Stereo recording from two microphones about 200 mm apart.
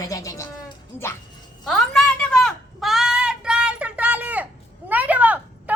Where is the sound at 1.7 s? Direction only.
5° left (ahead or behind).